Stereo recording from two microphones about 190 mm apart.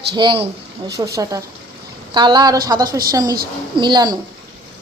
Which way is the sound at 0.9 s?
15° right (ahead or behind).